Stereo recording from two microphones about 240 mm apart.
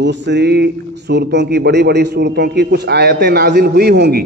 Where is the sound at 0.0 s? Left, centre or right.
Right.